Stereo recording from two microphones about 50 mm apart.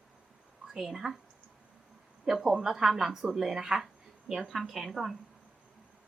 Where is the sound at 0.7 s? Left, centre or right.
Centre.